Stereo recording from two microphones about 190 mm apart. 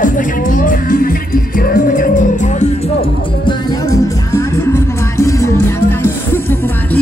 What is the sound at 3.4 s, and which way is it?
Music, 15° left (ahead or behind).